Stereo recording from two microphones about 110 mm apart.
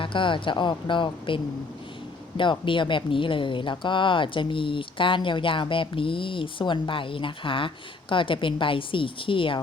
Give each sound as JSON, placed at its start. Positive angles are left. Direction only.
{"t": 0.0, "sound": "speech", "side_deg": 50}
{"t": 2.4, "sound": "speech", "side_deg": 50}